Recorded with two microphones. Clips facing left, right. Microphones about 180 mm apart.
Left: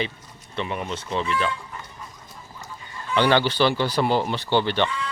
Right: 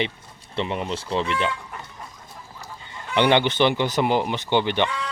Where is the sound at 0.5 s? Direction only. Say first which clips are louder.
Right 2 dB; 25° right (ahead or behind).